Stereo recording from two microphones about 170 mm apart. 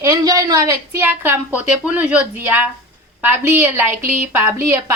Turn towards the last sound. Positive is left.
turn(degrees=-15)  # may be behind; listen again after turning